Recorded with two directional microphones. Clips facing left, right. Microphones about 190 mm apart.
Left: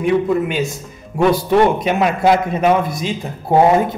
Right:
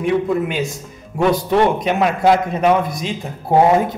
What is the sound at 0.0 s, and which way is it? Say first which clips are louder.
A man's voice: left 2 dB; centre (ahead or behind).